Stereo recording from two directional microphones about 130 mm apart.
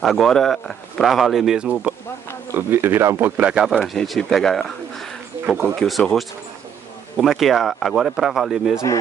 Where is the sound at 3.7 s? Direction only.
Centre (ahead or behind).